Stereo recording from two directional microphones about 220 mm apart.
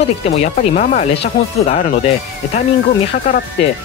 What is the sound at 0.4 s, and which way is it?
Speech, 30° left (ahead or behind).